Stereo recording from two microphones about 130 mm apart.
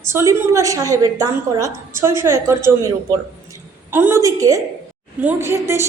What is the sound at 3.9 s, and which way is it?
A woman's voice, 15° right (ahead or behind).